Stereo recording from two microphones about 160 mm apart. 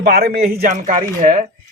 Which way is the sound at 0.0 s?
75° right (ahead or behind).